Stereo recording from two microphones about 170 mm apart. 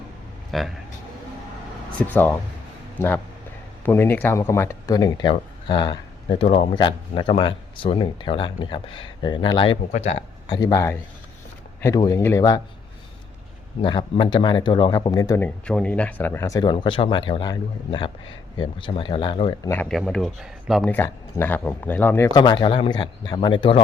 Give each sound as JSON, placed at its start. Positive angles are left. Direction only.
{"t": 0.5, "sound": "speech", "side_deg": 0}
{"t": 1.9, "sound": "speech", "side_deg": 10}
{"t": 6.4, "sound": "speech", "side_deg": 40}
{"t": 6.7, "sound": "speech", "side_deg": 30}
{"t": 10.4, "sound": "speech", "side_deg": 25}
{"t": 11.9, "sound": "speech", "side_deg": 20}
{"t": 13.8, "sound": "speech", "side_deg": 30}
{"t": 15.4, "sound": "speech", "side_deg": 5}
{"t": 19.7, "sound": "speech", "side_deg": 10}
{"t": 20.9, "sound": "speech", "side_deg": 15}
{"t": 22.3, "sound": "speech", "side_deg": 25}